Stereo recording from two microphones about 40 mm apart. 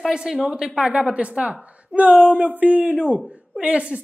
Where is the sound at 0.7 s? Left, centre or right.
Right.